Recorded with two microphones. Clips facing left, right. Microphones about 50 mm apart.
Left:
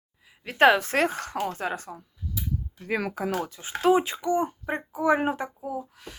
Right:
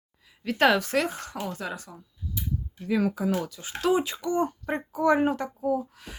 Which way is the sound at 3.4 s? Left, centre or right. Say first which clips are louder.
Left 4 dB; left.